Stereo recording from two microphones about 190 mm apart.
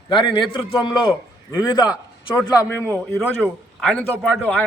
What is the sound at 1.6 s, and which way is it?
A man's voice, 20° left (ahead or behind).